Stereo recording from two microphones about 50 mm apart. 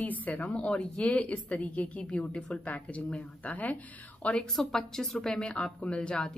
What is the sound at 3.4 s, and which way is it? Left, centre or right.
Speech, left.